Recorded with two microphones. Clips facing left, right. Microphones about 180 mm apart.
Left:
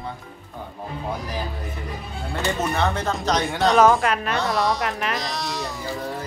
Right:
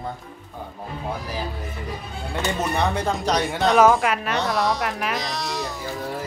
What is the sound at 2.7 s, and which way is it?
Speech, 15° right (ahead or behind).